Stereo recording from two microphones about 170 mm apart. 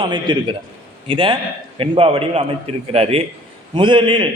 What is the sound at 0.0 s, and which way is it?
A man's voice, 25° right (ahead or behind).